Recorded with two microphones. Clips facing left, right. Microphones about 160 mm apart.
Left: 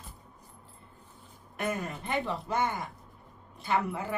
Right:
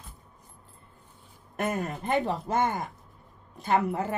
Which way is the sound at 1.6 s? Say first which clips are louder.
Right 3 dB; 45° right (ahead or behind).